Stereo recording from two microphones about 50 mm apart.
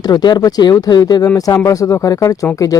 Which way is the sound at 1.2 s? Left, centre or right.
Left.